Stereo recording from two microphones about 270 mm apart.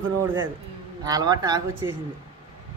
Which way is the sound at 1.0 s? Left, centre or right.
Centre.